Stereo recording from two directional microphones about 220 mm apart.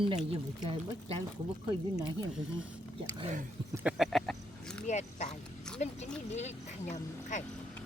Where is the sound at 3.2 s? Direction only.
30° right (ahead or behind).